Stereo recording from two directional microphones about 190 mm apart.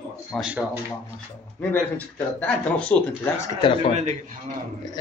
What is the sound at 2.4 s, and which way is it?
Speech, 5° left (ahead or behind).